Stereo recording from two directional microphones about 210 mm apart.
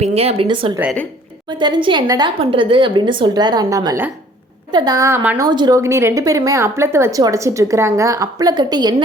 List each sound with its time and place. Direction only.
0.0 s a woman's voice: 30° right (ahead or behind); by 5.5 s 10° right (ahead or behind)
5.5 s speech: 20° right (ahead or behind)